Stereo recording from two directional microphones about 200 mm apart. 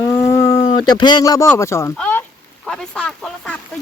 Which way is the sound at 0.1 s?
15° left (ahead or behind).